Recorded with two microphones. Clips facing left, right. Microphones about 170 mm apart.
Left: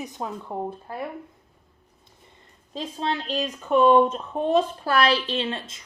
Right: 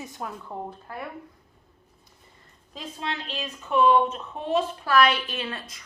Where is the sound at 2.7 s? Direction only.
30° left (ahead or behind).